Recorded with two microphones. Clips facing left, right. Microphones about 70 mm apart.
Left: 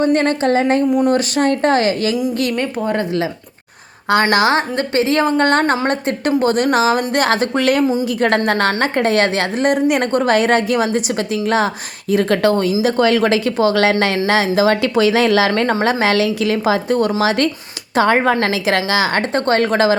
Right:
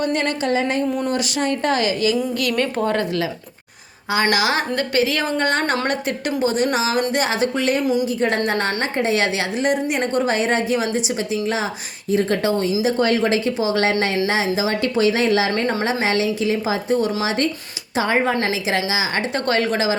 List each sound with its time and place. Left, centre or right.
0.0 s a woman's voice: left
2.9 s speech: left
4.1 s a woman's voice: left
7.6 s a woman's voice: left
8.4 s a woman's voice: left
12.1 s a woman's voice: left
12.8 s a woman's voice: left
17.9 s a woman's voice: left
19.3 s a woman's voice: left